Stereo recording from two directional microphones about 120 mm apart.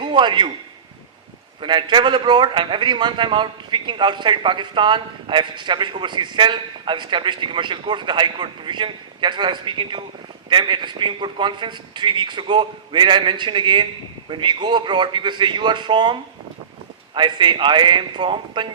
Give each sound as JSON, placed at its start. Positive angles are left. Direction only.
{"t": 0.0, "sound": "a man's voice", "side_deg": -40}
{"t": 1.6, "sound": "a man's voice", "side_deg": -40}
{"t": 17.2, "sound": "a man's voice", "side_deg": -40}